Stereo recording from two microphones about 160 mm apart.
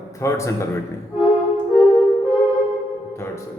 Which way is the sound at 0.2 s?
20° left (ahead or behind).